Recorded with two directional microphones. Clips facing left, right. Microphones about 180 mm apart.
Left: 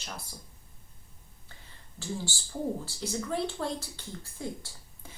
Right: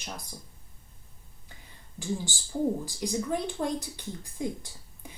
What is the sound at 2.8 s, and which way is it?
Speech, 15° right (ahead or behind).